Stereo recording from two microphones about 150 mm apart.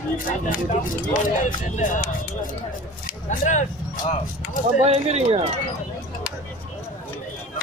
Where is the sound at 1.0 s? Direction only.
60° left (ahead or behind).